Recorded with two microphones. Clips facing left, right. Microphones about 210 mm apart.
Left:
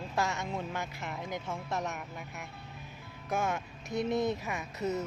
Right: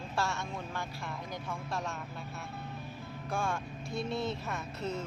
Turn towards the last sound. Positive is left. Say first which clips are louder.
# left 3 dB
turn(degrees=15)  # may be behind; listen again after turning